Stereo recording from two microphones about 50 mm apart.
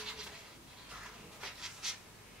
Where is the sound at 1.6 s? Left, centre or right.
Centre.